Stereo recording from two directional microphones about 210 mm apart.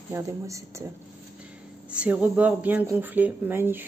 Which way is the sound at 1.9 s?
5° right (ahead or behind).